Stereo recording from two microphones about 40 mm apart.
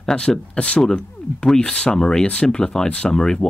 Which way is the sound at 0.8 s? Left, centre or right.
Centre.